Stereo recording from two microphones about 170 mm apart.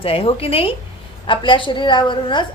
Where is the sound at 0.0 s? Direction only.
35° left (ahead or behind).